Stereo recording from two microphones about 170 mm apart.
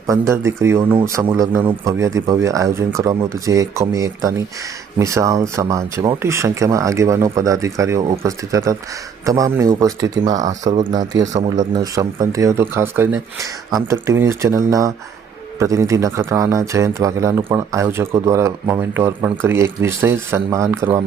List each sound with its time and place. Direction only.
0.1 s speech: 15° right (ahead or behind)
10.3 s speech: 45° right (ahead or behind)
11.1 s a man's voice: 90° right
11.7 s speech: 20° right (ahead or behind)